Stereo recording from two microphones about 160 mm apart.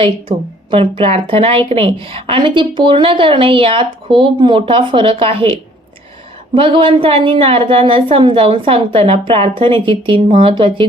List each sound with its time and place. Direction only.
0.0 s a woman's voice: 35° right (ahead or behind)